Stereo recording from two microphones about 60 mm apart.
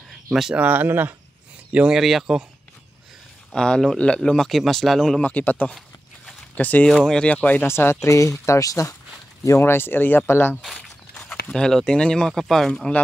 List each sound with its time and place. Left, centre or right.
0.3 s speech: centre
0.6 s speech: right
1.9 s speech: centre
3.5 s speech: centre
5.2 s speech: left
7.6 s speech: left
9.6 s speech: left
10.6 s walk: centre
11.5 s speech: centre
12.7 s speech: centre